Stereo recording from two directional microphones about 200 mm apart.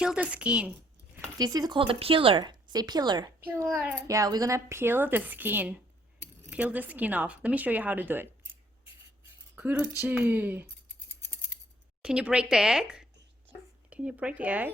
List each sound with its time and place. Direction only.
0.0 s speech: 5° right (ahead or behind)
1.4 s speech: 20° right (ahead or behind)
3.4 s a child's voice: 10° right (ahead or behind)
9.6 s a child's voice: 5° right (ahead or behind)
12.0 s a child's voice: 5° right (ahead or behind)